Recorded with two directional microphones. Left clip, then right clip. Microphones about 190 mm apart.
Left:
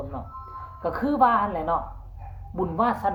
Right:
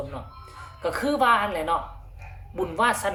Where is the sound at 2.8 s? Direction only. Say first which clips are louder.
Right 1 dB; 45° right (ahead or behind).